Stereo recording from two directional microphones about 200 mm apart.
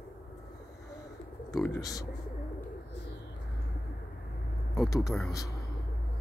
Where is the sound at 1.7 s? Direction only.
20° left (ahead or behind).